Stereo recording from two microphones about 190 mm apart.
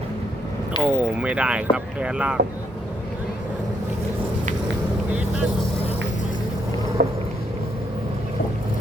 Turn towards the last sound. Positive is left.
turn(degrees=-60)  # may be behind; listen again after turning